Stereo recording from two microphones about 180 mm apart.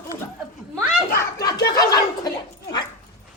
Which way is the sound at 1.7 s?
20° left (ahead or behind).